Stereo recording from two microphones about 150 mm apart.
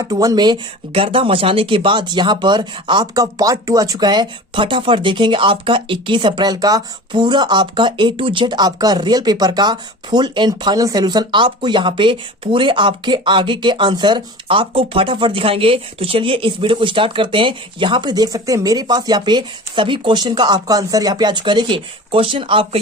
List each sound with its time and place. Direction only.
0.0 s speech: 25° right (ahead or behind)